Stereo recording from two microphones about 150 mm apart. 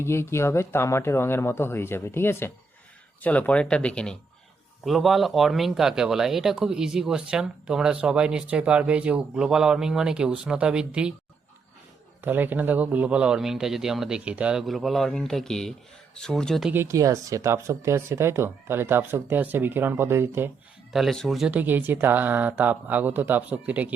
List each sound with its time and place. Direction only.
0.0 s a man's voice: 15° left (ahead or behind); by 11.1 s 5° right (ahead or behind)
12.2 s a man's voice: 10° right (ahead or behind)
16.7 s speech: 20° right (ahead or behind)
20.9 s speech: centre (ahead or behind)